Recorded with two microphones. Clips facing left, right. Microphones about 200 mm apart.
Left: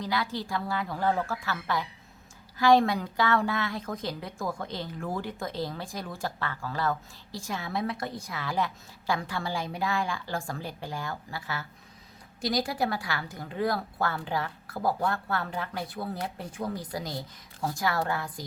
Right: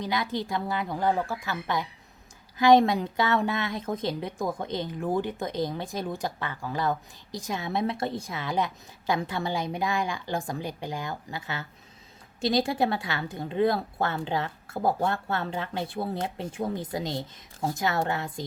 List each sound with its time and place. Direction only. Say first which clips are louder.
0.0 s a woman's voice: right 2 dB; 20° right (ahead or behind)